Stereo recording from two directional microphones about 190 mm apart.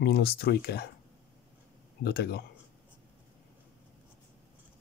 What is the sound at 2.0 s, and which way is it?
Speech, 55° left (ahead or behind).